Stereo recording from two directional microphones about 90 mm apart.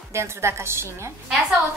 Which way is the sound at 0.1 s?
30° right (ahead or behind).